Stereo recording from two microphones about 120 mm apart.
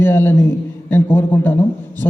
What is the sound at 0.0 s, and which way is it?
A man's voice, 20° left (ahead or behind).